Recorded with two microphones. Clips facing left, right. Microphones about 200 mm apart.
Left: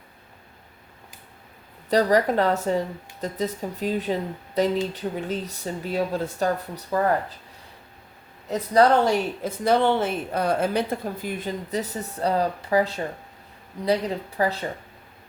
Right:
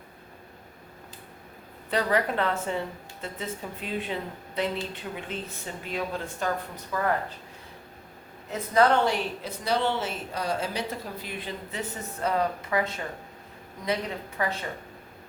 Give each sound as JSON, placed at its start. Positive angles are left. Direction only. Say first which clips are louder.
{"t": 1.9, "sound": "speech", "louder": "left 6 dB", "side_deg": 40}
{"t": 8.4, "sound": "speech", "louder": "left 4 dB", "side_deg": 35}